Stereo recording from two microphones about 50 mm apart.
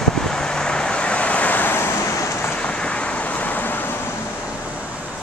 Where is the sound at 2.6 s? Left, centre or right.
Left.